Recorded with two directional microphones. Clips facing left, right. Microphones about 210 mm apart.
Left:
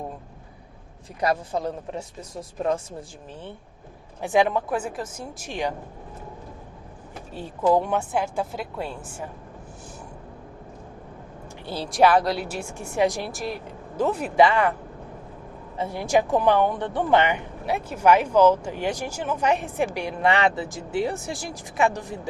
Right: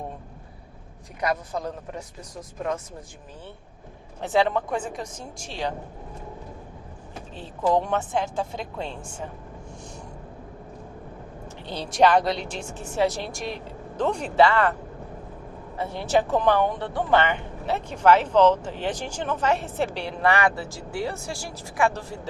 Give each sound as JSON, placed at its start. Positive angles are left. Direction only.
{"t": 1.2, "sound": "speech", "side_deg": 30}
{"t": 4.2, "sound": "speech", "side_deg": 15}
{"t": 7.3, "sound": "speech", "side_deg": 10}
{"t": 11.6, "sound": "speech", "side_deg": 5}
{"t": 13.3, "sound": "speech", "side_deg": 0}
{"t": 15.8, "sound": "speech", "side_deg": 10}